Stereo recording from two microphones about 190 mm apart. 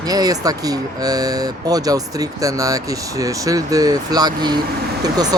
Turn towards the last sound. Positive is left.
turn(degrees=-20)  # may be behind; listen again after turning